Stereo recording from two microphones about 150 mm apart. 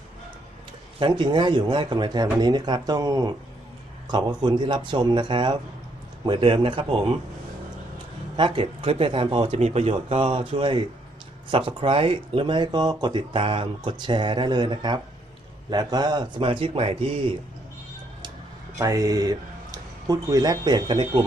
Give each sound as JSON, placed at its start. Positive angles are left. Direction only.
{"t": 0.9, "sound": "a man's voice", "side_deg": -30}
{"t": 8.4, "sound": "speech", "side_deg": -35}
{"t": 18.8, "sound": "speech", "side_deg": -25}